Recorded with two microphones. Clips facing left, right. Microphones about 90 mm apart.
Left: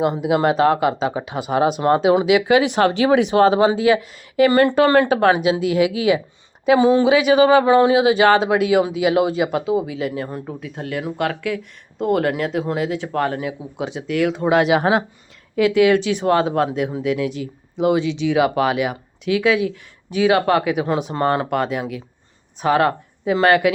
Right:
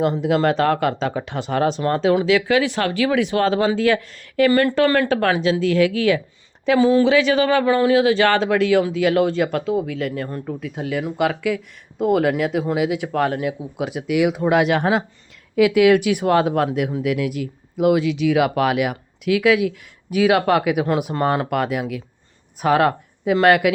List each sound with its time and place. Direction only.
0.0 s speech: 10° left (ahead or behind)
10.6 s speech: 5° right (ahead or behind)
14.4 s speech: 5° left (ahead or behind)